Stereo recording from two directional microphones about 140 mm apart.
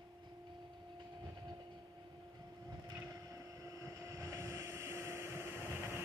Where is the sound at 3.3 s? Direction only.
25° right (ahead or behind).